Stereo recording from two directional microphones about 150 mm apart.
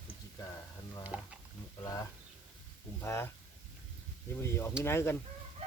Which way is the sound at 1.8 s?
20° left (ahead or behind).